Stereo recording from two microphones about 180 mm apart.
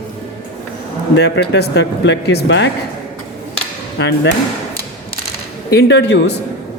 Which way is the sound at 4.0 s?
75° left (ahead or behind).